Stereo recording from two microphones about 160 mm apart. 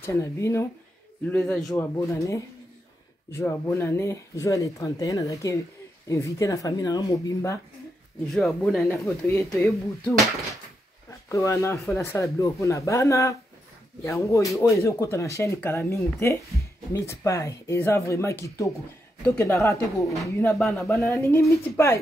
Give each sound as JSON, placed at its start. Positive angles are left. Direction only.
{"t": 0.0, "sound": "speech", "side_deg": 15}
{"t": 1.3, "sound": "music", "side_deg": 5}
{"t": 1.8, "sound": "speech", "side_deg": 20}
{"t": 8.6, "sound": "music", "side_deg": 5}
{"t": 9.0, "sound": "speech", "side_deg": 10}
{"t": 9.4, "sound": "music", "side_deg": 0}
{"t": 11.1, "sound": "speech", "side_deg": 20}
{"t": 20.8, "sound": "speech", "side_deg": 20}